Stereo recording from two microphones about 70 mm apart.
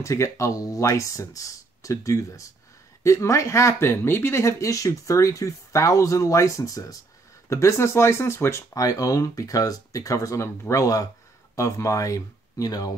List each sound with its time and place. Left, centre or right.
0.0 s speech: left
8.7 s speech: left